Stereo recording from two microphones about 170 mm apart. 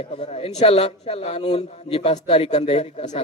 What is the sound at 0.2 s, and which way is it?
A man's voice, 35° left (ahead or behind).